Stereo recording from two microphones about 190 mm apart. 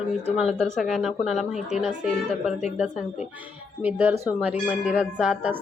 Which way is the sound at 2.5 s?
35° left (ahead or behind).